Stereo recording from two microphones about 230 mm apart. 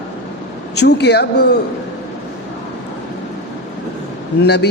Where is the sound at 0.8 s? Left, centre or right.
Left.